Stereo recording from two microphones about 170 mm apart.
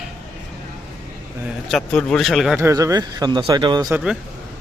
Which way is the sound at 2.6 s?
15° right (ahead or behind).